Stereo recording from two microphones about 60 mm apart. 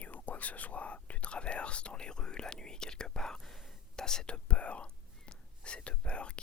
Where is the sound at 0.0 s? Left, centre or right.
Left.